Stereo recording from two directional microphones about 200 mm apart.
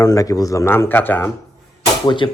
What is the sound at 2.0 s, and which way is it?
Speech, 25° left (ahead or behind).